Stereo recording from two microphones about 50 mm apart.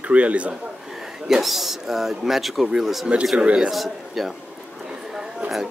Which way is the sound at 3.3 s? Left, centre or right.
Right.